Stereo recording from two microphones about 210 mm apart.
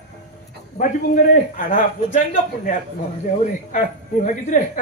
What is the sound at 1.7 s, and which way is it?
A man's voice, 35° left (ahead or behind).